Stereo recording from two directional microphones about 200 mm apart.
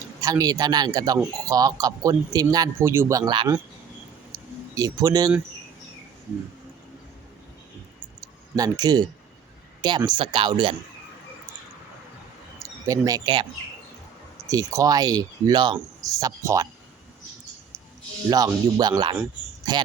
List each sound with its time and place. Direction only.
0.2 s speech: 20° right (ahead or behind)
4.3 s a sound: 15° right (ahead or behind)
8.2 s a sound: 20° right (ahead or behind)
10.1 s speech: 25° right (ahead or behind)
12.8 s speech: 15° right (ahead or behind)
14.5 s speech: 15° right (ahead or behind)
18.3 s a man's voice: 20° right (ahead or behind)